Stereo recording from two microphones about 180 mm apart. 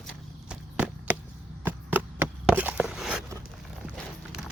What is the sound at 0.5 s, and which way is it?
Chop, 10° right (ahead or behind).